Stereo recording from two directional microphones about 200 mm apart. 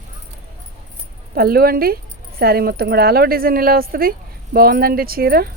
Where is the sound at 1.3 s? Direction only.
50° right (ahead or behind).